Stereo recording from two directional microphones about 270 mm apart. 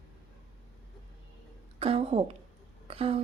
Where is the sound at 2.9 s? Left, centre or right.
Right.